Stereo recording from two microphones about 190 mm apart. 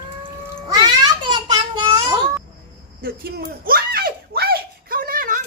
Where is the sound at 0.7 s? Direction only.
20° right (ahead or behind).